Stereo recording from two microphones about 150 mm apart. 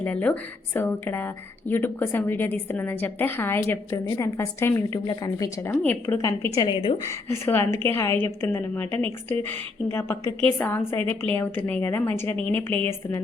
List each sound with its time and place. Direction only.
0.0 s a woman's voice: 10° left (ahead or behind)